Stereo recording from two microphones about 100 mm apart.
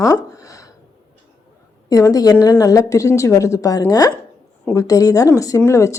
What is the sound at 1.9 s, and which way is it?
A woman's voice, 35° left (ahead or behind).